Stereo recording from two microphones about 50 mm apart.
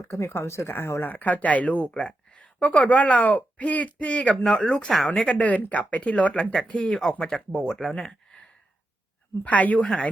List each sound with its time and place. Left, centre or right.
0.0 s speech: left
0.3 s speech: left
1.0 s speech: left
1.9 s speech: centre
4.4 s speech: centre
7.3 s speech: centre
9.4 s speech: left